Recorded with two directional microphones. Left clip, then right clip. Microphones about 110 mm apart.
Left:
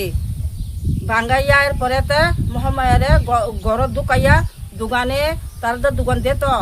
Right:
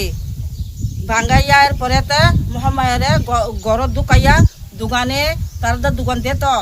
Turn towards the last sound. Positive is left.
turn(degrees=25)  # may be behind; listen again after turning